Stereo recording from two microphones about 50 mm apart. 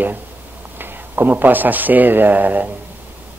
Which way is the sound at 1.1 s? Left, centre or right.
Right.